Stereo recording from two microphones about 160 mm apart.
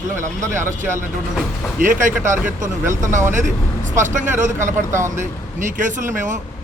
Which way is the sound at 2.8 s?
20° right (ahead or behind).